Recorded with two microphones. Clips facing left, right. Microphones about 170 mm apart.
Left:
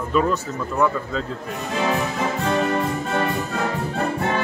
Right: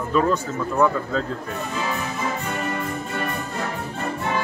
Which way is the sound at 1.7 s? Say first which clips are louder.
Left 7 dB; 90° left.